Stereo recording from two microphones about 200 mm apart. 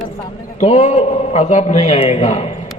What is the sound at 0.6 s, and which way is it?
A man's voice, 35° left (ahead or behind).